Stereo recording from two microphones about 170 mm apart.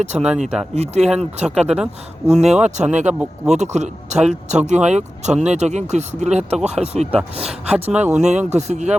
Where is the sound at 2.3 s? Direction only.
40° right (ahead or behind).